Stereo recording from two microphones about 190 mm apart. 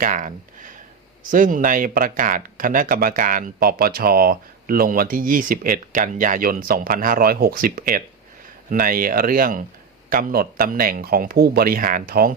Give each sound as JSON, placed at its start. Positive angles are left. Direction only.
{"t": 0.0, "sound": "speech", "side_deg": -40}